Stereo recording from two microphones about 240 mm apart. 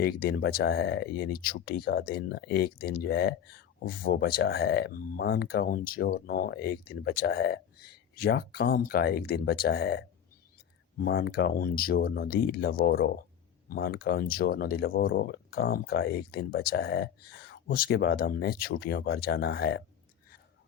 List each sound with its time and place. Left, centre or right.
0.0 s speech: left